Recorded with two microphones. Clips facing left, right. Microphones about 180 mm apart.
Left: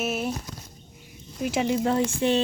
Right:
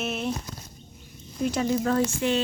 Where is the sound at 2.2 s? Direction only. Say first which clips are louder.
Left 6 dB; 30° left (ahead or behind).